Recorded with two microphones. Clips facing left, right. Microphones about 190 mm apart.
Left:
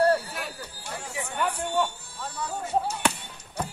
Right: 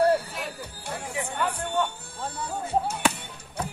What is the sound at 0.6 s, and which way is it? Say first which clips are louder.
Chatter: right 2 dB; 55° right (ahead or behind).